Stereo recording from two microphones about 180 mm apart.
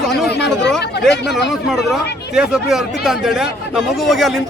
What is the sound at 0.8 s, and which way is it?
Speech, 70° left (ahead or behind).